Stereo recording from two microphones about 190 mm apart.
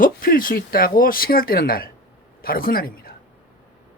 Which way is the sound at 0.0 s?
50° left (ahead or behind).